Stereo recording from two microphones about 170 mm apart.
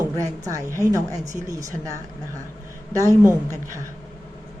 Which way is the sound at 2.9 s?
20° right (ahead or behind).